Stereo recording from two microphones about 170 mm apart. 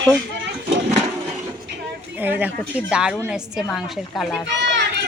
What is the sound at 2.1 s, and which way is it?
Speech, 10° right (ahead or behind).